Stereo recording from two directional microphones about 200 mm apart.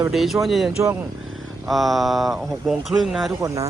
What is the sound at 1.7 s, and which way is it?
Speech, centre (ahead or behind).